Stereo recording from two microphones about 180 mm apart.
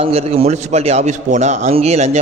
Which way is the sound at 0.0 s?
35° right (ahead or behind).